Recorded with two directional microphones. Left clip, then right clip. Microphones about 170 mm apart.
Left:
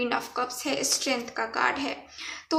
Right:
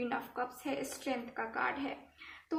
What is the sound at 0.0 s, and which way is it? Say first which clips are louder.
A woman's voice: left 9 dB; 25° left (ahead or behind).